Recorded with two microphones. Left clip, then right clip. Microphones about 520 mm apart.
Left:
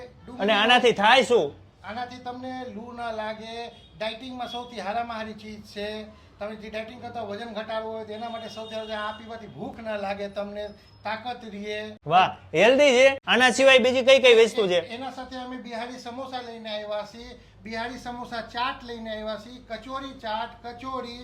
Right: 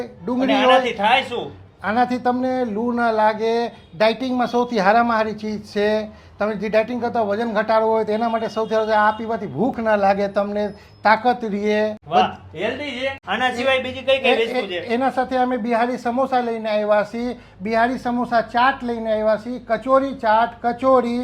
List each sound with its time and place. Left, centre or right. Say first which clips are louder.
0.3 s a man's voice: right 5 dB; left
1.8 s speech: right 15 dB; right
12.0 s a man's voice: left 3 dB; left
13.2 s speech: left 2 dB; left
14.8 s speech: right 15 dB; right
18.5 s speech: right 12 dB; right